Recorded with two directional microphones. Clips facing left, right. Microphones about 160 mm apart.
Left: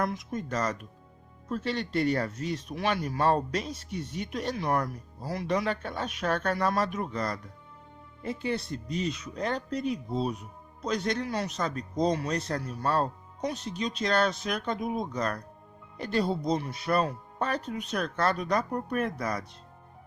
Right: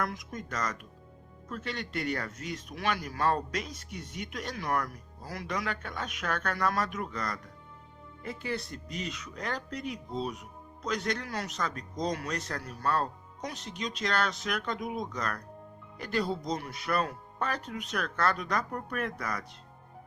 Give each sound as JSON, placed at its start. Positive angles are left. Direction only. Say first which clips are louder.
{"t": 0.0, "sound": "speech", "louder": "left 4 dB", "side_deg": 25}